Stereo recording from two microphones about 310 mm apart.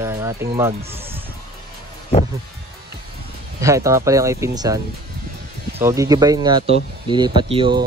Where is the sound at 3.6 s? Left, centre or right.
Centre.